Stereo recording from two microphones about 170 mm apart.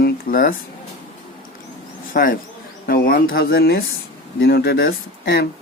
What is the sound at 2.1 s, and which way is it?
Speech, 55° left (ahead or behind).